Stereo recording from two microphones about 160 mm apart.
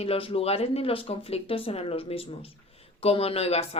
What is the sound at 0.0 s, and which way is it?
Speech, 40° left (ahead or behind).